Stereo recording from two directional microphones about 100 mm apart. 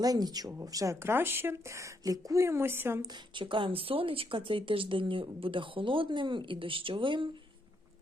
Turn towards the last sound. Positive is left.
turn(degrees=-55)  # may be behind; listen again after turning